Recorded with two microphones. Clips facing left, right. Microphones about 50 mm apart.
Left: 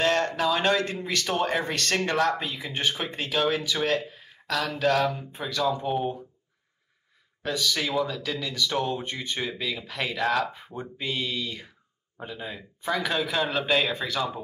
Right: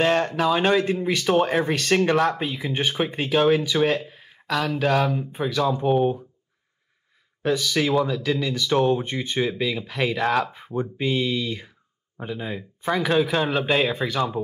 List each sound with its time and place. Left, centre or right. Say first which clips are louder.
0.0 s speech: right 3 dB; centre
7.4 s speech: right 6 dB; centre